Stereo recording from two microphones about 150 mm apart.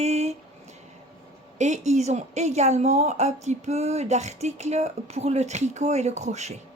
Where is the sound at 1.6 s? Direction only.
50° right (ahead or behind).